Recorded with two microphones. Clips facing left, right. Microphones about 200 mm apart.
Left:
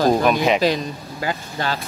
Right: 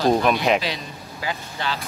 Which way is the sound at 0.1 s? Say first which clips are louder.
Left 2 dB; centre (ahead or behind).